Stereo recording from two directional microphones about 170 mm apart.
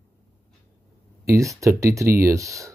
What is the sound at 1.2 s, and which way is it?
Speech, 20° right (ahead or behind).